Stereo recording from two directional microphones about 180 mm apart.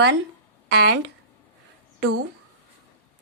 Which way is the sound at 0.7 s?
65° right (ahead or behind).